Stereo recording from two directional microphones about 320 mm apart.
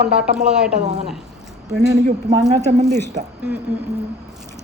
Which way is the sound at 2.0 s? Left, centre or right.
Right.